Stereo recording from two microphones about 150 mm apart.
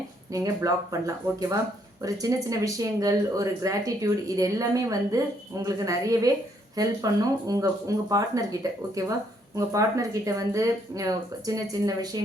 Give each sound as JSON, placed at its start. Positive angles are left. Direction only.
{"t": 0.3, "sound": "speech", "side_deg": -20}